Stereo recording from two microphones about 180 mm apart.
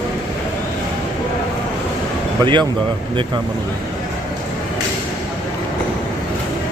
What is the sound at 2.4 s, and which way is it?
Speech, 25° right (ahead or behind).